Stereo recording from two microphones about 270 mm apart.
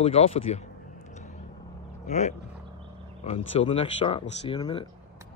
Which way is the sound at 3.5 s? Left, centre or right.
Left.